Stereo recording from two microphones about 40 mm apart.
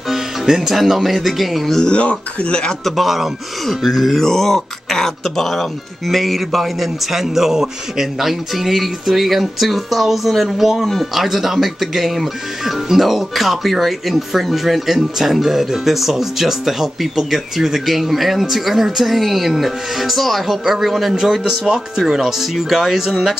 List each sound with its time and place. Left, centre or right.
0.1 s speech: centre
1.8 s speech: left
2.8 s speech: centre